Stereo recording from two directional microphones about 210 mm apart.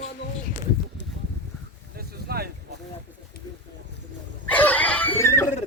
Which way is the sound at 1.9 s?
45° right (ahead or behind).